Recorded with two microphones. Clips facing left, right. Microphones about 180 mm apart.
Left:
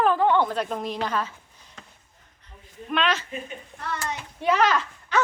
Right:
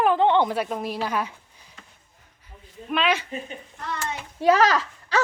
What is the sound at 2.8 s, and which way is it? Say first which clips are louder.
Speech: right 1 dB; 5° right (ahead or behind).